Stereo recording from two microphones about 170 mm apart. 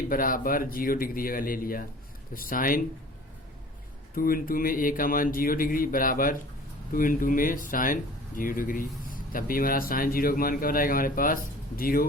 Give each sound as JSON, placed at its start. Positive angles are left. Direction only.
{"t": 0.1, "sound": "speech", "side_deg": 55}
{"t": 4.1, "sound": "speech", "side_deg": 55}